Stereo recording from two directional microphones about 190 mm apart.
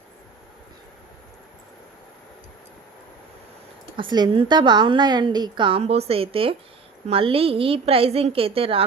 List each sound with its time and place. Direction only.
3.9 s a woman's voice: 25° right (ahead or behind)